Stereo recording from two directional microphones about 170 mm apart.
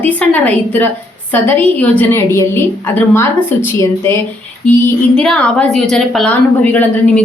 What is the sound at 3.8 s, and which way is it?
Speech, 15° left (ahead or behind).